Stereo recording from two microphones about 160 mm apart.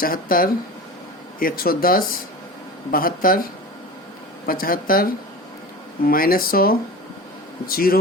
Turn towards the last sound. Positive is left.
turn(degrees=65)  # may be behind; listen again after turning